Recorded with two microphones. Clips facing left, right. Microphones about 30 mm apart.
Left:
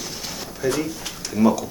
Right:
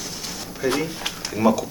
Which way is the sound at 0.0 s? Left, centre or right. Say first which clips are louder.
Left 1 dB; centre.